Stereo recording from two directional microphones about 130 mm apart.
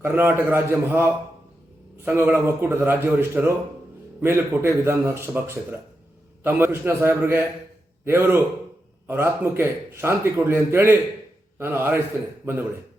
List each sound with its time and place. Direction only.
0.0 s a man's voice: 20° right (ahead or behind)